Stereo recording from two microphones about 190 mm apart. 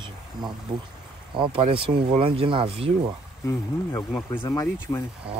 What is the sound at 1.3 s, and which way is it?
Speech, 30° right (ahead or behind).